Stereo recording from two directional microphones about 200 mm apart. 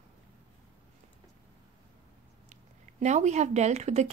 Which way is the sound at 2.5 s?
35° right (ahead or behind).